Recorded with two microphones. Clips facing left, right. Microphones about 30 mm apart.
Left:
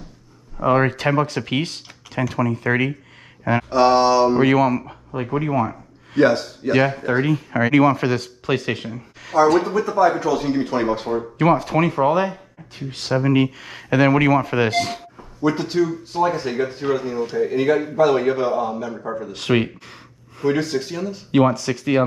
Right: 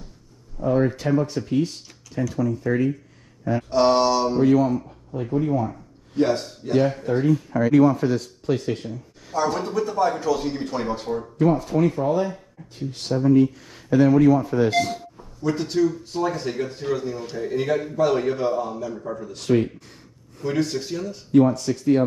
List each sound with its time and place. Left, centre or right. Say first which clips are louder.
0.6 s speech: left 4 dB; left
3.7 s speech: left 3 dB; left
4.3 s speech: left 2 dB; left
9.7 s speech: left 5 dB; left
11.1 s speech: even; left
15.4 s a man's voice: left 2 dB; left
17.2 s speech: left 9 dB; centre
17.5 s a man's voice: left 1 dB; left
18.9 s speech: left 4 dB; left
19.3 s a sound: left 1 dB; left
20.4 s a man's voice: left 4 dB; left
21.3 s speech: even; left